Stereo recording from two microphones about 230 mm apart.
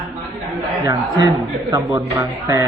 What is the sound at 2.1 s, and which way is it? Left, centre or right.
Speech, centre.